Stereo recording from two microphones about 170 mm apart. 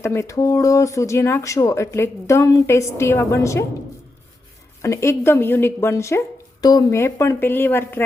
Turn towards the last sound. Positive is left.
turn(degrees=15)  # may be behind; listen again after turning